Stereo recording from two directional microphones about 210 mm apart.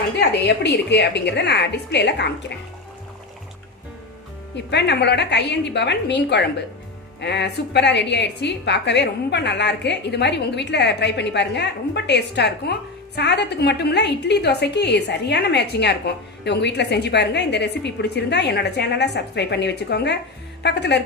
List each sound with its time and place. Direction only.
0.2 s a woman's voice: 50° left (ahead or behind)
4.5 s a woman's voice: 55° left (ahead or behind)